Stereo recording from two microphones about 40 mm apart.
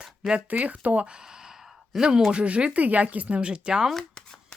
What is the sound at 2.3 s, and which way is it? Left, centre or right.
Speech, right.